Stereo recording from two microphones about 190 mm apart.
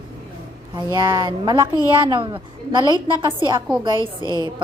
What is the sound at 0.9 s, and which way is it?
A woman's voice, 25° right (ahead or behind).